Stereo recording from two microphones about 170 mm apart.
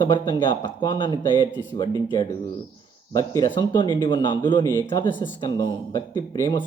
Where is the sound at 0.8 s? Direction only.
25° left (ahead or behind).